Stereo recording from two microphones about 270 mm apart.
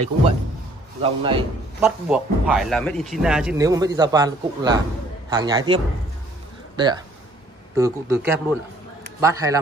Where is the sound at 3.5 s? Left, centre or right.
Centre.